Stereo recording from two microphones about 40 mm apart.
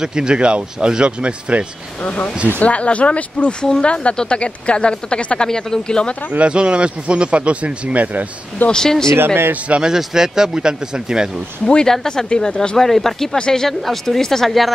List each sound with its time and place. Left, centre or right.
0.0 s speech: centre
2.6 s speech: left
6.4 s speech: right
8.6 s speech: centre
9.2 s speech: right
9.9 s speech: centre
11.6 s speech: centre
12.7 s speech: centre